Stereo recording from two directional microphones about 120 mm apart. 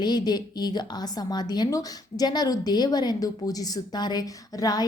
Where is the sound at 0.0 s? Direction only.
35° left (ahead or behind).